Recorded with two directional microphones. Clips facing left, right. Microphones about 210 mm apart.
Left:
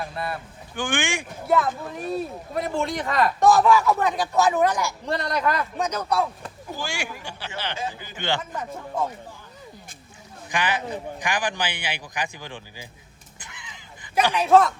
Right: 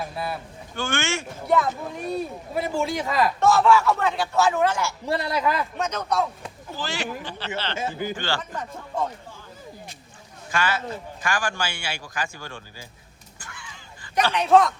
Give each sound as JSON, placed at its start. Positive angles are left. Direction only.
{"t": 0.0, "sound": "speech", "side_deg": -5}
{"t": 0.8, "sound": "a man's voice", "side_deg": 15}
{"t": 1.5, "sound": "speech", "side_deg": 0}
{"t": 3.4, "sound": "a man's voice", "side_deg": 15}
{"t": 5.0, "sound": "speech", "side_deg": -5}
{"t": 5.8, "sound": "a man's voice", "side_deg": 10}
{"t": 7.9, "sound": "a man's voice", "side_deg": -50}
{"t": 8.1, "sound": "speech", "side_deg": 20}
{"t": 8.4, "sound": "a man's voice", "side_deg": 10}
{"t": 10.5, "sound": "a man's voice", "side_deg": 15}
{"t": 13.4, "sound": "a sound", "side_deg": 20}
{"t": 14.3, "sound": "speech", "side_deg": 5}